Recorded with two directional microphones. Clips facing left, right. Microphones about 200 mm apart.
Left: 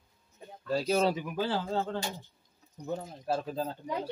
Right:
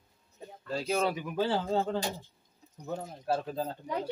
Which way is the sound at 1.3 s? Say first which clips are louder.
Right 2 dB; centre (ahead or behind).